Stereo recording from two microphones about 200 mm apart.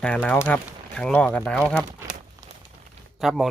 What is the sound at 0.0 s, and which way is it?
Speech, 5° left (ahead or behind).